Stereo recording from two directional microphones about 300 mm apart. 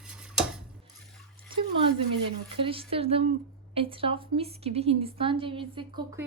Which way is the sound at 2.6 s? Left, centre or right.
Centre.